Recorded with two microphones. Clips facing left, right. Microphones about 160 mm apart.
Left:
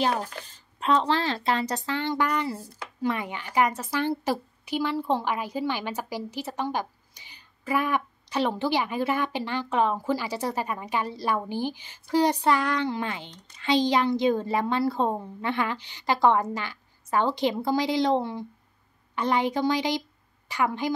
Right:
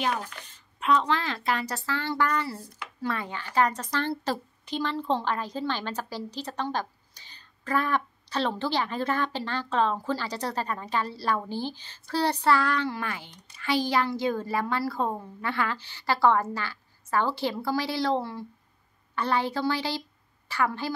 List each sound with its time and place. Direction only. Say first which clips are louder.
0.0 s a child's voice: left 3 dB; 35° left (ahead or behind); by 20.9 s 15° left (ahead or behind)